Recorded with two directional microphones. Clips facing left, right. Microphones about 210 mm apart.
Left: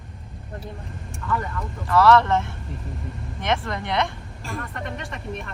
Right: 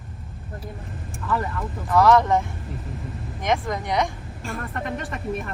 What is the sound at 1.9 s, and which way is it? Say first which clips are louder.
Speech: even; 15° right (ahead or behind).